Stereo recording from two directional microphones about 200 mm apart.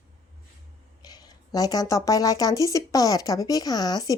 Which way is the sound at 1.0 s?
20° left (ahead or behind).